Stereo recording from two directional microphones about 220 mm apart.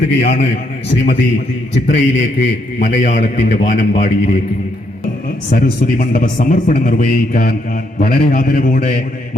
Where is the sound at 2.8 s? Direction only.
35° left (ahead or behind).